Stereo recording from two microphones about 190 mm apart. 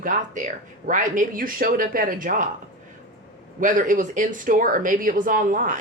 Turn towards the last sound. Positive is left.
turn(degrees=-45)  # may be behind; listen again after turning